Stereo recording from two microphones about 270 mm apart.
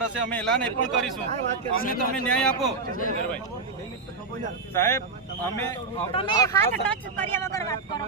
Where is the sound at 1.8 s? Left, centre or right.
Left.